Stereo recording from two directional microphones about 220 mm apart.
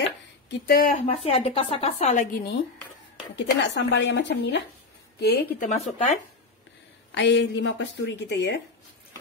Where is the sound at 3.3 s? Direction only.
50° left (ahead or behind); by 6.2 s 30° left (ahead or behind).